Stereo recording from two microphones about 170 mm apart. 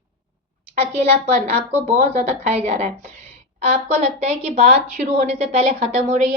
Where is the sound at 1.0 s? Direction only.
40° right (ahead or behind).